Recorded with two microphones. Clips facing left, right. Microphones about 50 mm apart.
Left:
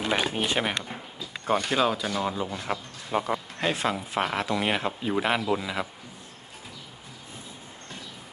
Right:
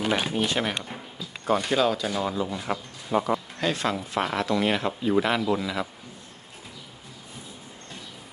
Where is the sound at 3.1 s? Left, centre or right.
Left.